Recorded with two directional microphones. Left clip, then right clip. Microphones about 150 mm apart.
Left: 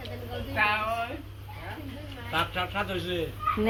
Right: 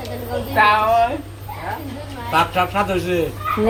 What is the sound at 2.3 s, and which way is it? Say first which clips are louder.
Speech: right 12 dB; 25° right (ahead or behind).